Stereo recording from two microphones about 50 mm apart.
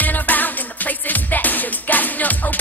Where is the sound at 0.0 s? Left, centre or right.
Left.